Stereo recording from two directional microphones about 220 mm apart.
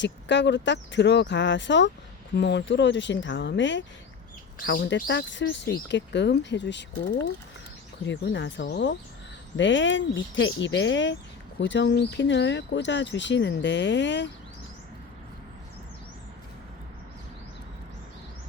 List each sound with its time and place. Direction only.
0.0 s speech: 55° left (ahead or behind)